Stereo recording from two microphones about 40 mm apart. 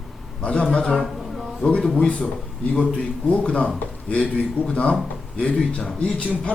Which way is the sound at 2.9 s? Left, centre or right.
Left.